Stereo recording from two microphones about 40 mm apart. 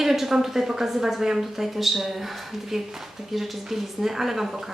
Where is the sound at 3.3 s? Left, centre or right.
Centre.